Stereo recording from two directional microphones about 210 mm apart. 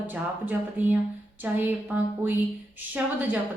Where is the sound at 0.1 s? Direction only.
10° right (ahead or behind).